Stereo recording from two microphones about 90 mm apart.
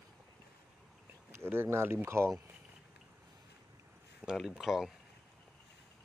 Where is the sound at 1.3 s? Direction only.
25° right (ahead or behind).